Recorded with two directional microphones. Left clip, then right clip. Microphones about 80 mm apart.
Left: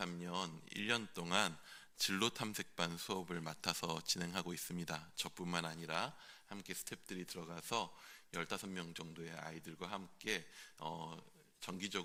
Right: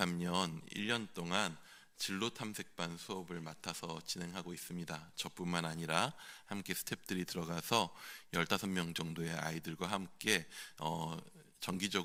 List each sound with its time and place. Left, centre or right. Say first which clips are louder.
0.0 s speech: right 6 dB; right
0.7 s speech: right 1 dB; centre
2.0 s speech: left 2 dB; centre
4.8 s speech: right 1 dB; centre
5.7 s speech: right 6 dB; right